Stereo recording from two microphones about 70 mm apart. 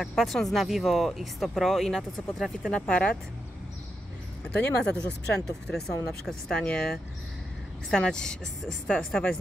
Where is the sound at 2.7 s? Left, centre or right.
Centre.